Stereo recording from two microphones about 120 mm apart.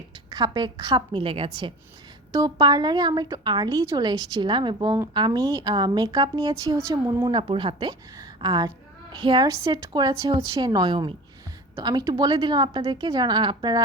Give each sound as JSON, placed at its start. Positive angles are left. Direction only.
{"t": 0.3, "sound": "a woman's voice", "side_deg": -35}
{"t": 7.3, "sound": "a woman's voice", "side_deg": -45}
{"t": 9.5, "sound": "a woman's voice", "side_deg": -30}